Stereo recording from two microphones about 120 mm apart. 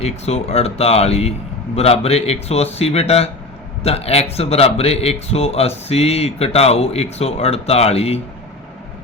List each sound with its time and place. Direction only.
0.0 s a man's voice: 60° left (ahead or behind)